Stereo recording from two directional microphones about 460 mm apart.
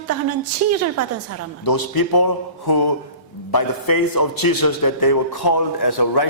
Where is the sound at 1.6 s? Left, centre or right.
Left.